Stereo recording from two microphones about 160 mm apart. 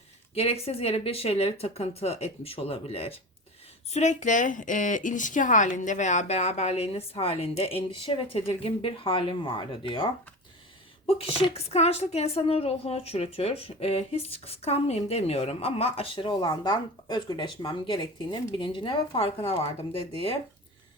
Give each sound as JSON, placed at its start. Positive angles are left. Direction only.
{"t": 0.3, "sound": "a woman's voice", "side_deg": 40}
{"t": 3.9, "sound": "a woman's voice", "side_deg": 50}